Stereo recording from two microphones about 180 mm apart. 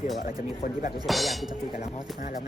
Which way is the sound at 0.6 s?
45° left (ahead or behind).